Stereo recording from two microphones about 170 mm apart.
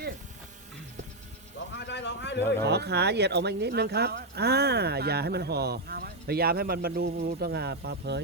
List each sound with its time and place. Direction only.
1.8 s speech: 90° left
2.6 s speech: 75° right (ahead or behind)